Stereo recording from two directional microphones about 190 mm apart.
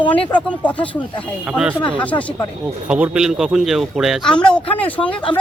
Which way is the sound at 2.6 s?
5° right (ahead or behind).